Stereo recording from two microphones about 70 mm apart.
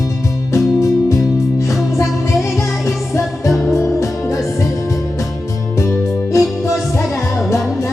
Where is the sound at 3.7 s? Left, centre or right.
Left.